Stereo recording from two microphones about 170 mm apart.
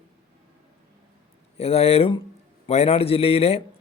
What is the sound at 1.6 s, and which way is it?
A man's voice, 35° left (ahead or behind).